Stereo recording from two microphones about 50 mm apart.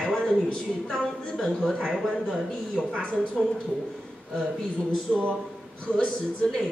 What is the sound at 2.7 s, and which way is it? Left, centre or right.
Speech, centre.